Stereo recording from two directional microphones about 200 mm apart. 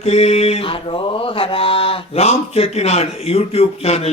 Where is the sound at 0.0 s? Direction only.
30° left (ahead or behind).